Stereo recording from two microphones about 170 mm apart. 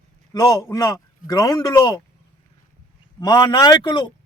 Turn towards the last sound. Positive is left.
turn(degrees=25)  # may be behind; listen again after turning